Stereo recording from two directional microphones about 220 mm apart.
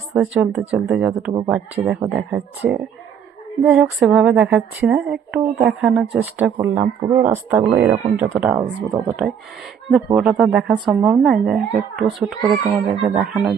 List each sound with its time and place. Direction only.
0.1 s speech: 5° right (ahead or behind)
12.0 s speech: 20° right (ahead or behind)
13.1 s speech: centre (ahead or behind)